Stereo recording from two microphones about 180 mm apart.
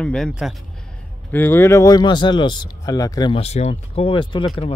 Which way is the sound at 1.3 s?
10° left (ahead or behind).